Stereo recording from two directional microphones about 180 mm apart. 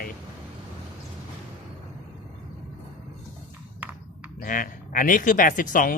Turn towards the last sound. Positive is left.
turn(degrees=50)  # may be behind; listen again after turning